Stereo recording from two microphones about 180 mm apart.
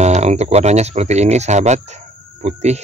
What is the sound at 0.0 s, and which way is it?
Speech, 40° right (ahead or behind).